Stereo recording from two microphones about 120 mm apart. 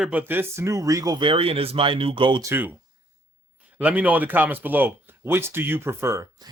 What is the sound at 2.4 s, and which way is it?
Speech, 20° right (ahead or behind).